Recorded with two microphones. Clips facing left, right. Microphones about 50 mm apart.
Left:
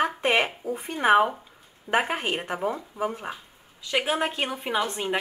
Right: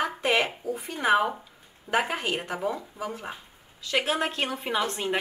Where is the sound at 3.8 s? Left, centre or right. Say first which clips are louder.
Left 1 dB; centre.